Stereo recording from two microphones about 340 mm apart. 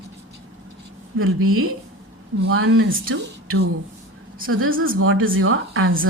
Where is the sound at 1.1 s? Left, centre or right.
Right.